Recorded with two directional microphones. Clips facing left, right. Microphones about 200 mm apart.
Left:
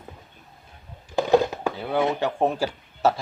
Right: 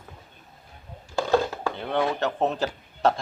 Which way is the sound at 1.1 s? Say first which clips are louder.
Left 4 dB; 15° left (ahead or behind).